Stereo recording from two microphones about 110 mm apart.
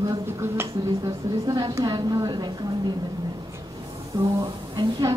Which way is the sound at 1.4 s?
35° right (ahead or behind).